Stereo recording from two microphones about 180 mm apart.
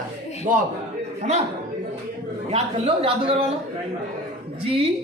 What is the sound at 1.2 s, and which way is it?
Speech, 40° right (ahead or behind).